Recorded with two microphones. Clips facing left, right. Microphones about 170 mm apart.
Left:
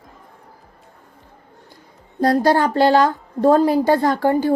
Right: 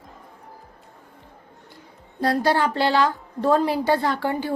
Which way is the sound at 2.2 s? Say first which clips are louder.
Left 5 dB; 45° left (ahead or behind).